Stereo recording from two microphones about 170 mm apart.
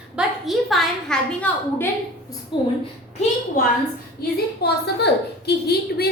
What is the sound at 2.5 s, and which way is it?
Speech, 25° left (ahead or behind).